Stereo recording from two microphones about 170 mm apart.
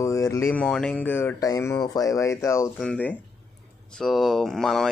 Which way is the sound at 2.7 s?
5° left (ahead or behind).